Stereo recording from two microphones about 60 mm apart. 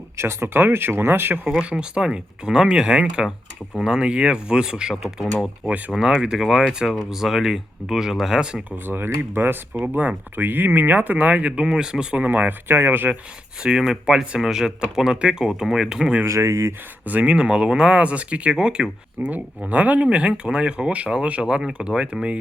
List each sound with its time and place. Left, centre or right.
0.2 s speech: right
1.5 s speech: centre
8.7 s speech: right; by 12.0 s centre
12.1 s speech: right
13.6 s speech: centre
16.2 s speech: right
17.1 s speech: right
19.3 s speech: right